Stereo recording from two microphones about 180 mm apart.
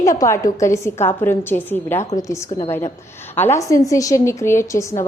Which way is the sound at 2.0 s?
40° left (ahead or behind).